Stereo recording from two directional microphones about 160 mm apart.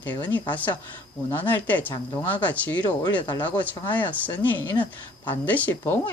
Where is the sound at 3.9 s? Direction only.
10° left (ahead or behind).